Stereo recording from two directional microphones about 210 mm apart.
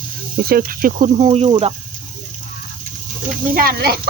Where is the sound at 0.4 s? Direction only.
45° right (ahead or behind); by 1.7 s 25° right (ahead or behind).